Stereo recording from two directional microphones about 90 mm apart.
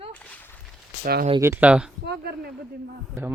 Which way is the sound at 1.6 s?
10° right (ahead or behind).